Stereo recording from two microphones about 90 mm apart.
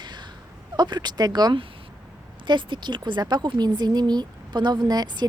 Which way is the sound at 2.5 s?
60° right (ahead or behind).